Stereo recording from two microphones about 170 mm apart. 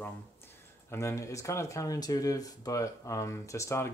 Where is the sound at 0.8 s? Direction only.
15° left (ahead or behind).